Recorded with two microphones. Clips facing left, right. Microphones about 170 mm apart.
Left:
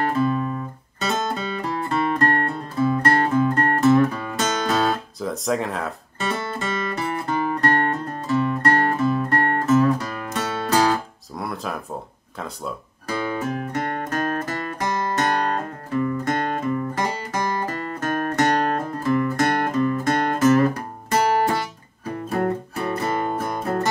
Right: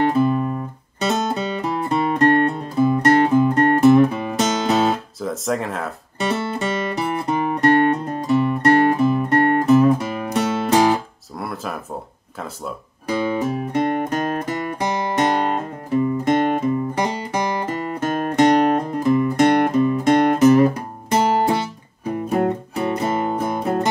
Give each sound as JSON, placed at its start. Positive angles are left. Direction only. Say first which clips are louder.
{"t": 1.0, "sound": "music", "louder": "right 4 dB", "side_deg": -20}
{"t": 5.2, "sound": "speech", "louder": "even", "side_deg": 0}
{"t": 7.0, "sound": "music", "louder": "right 2 dB", "side_deg": -20}
{"t": 11.3, "sound": "a sound", "louder": "right 1 dB", "side_deg": 0}
{"t": 13.1, "sound": "music", "louder": "right 4 dB", "side_deg": -15}